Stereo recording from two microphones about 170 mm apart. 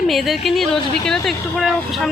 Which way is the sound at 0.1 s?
Centre (ahead or behind).